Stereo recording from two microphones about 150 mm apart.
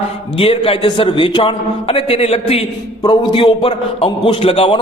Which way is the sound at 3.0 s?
30° left (ahead or behind).